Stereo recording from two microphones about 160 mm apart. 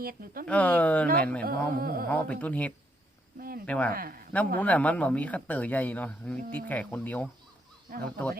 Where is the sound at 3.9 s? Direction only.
65° right (ahead or behind).